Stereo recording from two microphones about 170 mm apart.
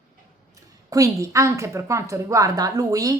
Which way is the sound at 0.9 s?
20° right (ahead or behind).